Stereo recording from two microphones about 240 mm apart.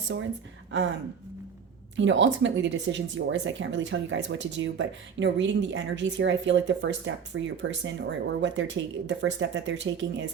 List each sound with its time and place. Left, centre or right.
2.0 s speech: right